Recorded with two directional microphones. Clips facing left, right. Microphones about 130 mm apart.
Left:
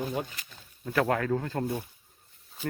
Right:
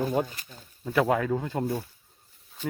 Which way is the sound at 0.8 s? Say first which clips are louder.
Right 2 dB; 5° right (ahead or behind).